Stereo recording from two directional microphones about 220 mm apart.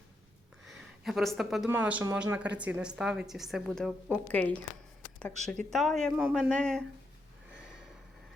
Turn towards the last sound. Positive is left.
turn(degrees=5)  # may be behind; listen again after turning